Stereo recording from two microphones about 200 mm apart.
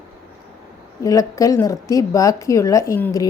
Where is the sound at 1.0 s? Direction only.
15° left (ahead or behind).